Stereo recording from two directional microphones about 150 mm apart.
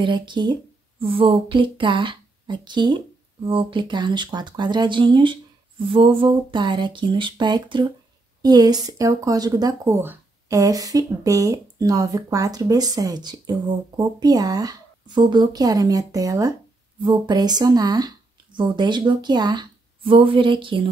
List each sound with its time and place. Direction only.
0.0 s speech: 30° right (ahead or behind)